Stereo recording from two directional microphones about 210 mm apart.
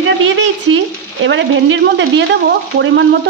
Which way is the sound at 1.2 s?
65° right (ahead or behind).